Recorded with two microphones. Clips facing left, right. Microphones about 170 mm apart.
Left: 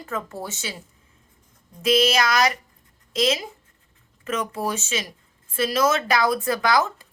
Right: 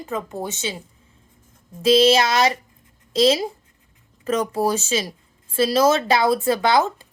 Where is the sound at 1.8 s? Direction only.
30° right (ahead or behind).